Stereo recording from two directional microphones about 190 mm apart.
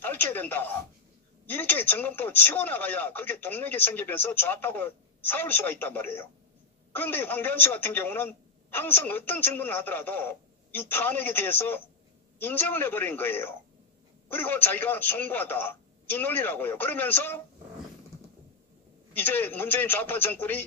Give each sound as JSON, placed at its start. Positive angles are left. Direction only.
{"t": 0.0, "sound": "a sound", "side_deg": 10}
{"t": 1.4, "sound": "speech", "side_deg": 10}
{"t": 19.1, "sound": "speech", "side_deg": 10}